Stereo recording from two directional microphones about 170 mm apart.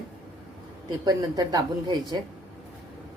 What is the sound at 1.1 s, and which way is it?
Speech, 20° right (ahead or behind).